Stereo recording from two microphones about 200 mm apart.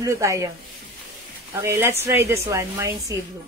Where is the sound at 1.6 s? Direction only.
15° right (ahead or behind).